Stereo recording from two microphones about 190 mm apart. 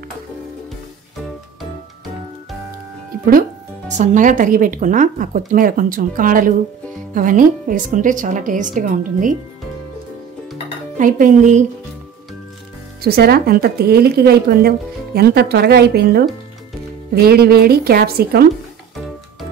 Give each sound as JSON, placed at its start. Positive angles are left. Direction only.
{"t": 3.3, "sound": "a woman's voice", "side_deg": -45}
{"t": 11.0, "sound": "a woman's voice", "side_deg": -45}
{"t": 13.0, "sound": "speech", "side_deg": -55}